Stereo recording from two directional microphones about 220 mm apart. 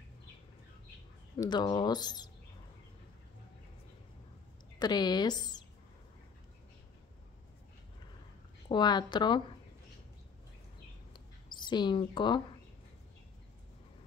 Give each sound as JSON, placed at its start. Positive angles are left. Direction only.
{"t": 1.4, "sound": "speech", "side_deg": 15}
{"t": 4.7, "sound": "speech", "side_deg": 20}
{"t": 8.6, "sound": "speech", "side_deg": 20}
{"t": 11.1, "sound": "mouse", "side_deg": 20}